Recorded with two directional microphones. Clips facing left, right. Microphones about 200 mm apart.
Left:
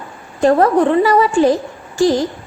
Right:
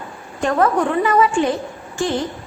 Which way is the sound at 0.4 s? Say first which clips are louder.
Left 6 dB; 35° left (ahead or behind).